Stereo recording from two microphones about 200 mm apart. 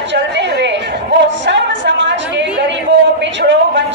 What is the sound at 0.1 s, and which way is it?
Chatter, 60° right (ahead or behind).